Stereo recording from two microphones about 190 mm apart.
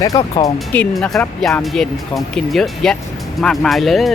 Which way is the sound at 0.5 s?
5° left (ahead or behind).